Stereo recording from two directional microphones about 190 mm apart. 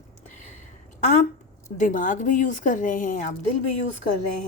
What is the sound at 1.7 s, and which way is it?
A woman's voice, 45° left (ahead or behind).